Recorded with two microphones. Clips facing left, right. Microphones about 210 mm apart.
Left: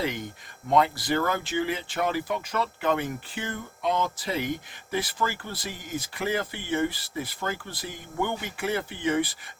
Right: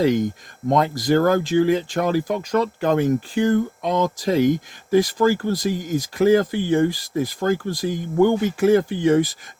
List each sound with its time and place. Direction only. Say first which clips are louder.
0.0 s speech: right 12 dB; 40° right (ahead or behind)